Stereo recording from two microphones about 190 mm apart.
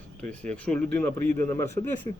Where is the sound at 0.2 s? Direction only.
5° left (ahead or behind).